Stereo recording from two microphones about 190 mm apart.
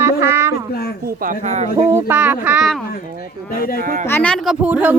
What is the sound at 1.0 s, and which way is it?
Speech, 45° right (ahead or behind).